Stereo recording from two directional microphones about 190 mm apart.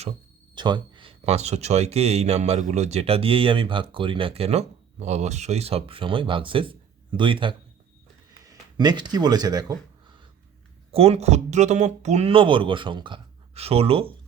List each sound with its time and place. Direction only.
0.5 s speech: 25° right (ahead or behind)
10.9 s speech: 35° right (ahead or behind)